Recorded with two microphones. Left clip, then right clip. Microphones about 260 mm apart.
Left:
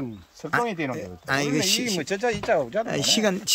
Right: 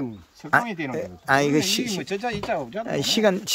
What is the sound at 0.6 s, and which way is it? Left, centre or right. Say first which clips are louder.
Speech: left 3 dB; left.